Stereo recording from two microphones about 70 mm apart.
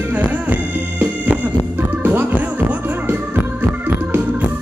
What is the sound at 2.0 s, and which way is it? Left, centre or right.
Music, right.